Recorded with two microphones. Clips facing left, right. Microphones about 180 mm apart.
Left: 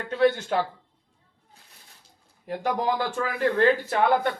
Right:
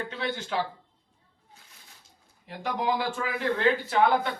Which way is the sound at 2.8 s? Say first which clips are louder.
Left 2 dB; 50° left (ahead or behind).